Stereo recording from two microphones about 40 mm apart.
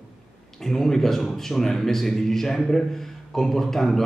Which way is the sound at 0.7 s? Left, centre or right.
Centre.